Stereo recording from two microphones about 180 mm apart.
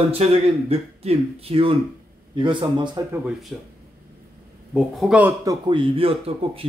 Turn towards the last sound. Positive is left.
turn(degrees=-30)  # may be behind; listen again after turning